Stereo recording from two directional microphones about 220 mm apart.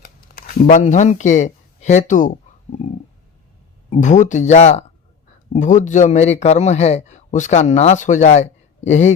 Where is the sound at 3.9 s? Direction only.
35° left (ahead or behind).